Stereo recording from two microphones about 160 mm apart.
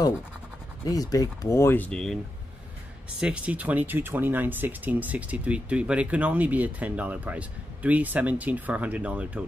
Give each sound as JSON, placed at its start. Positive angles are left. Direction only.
{"t": 0.8, "sound": "speech", "side_deg": 20}
{"t": 3.2, "sound": "speech", "side_deg": -5}